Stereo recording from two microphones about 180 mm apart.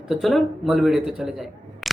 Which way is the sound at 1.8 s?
Centre (ahead or behind).